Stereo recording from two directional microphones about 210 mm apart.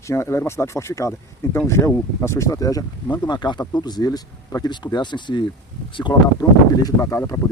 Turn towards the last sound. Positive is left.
turn(degrees=15)  # may be behind; listen again after turning